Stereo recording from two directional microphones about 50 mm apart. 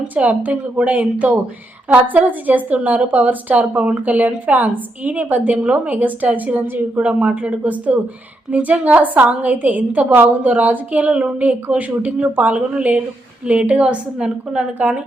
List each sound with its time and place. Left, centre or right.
0.1 s a woman's voice: right